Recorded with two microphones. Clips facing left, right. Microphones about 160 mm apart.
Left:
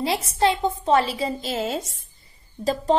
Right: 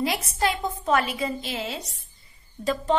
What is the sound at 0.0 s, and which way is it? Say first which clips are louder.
A woman's voice: left 4 dB; 30° left (ahead or behind).